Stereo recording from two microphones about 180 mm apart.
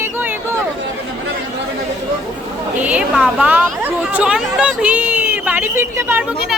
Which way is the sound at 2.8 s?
5° right (ahead or behind).